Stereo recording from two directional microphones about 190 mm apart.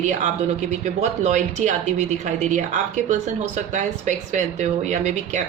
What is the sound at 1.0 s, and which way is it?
A woman's voice, 35° right (ahead or behind).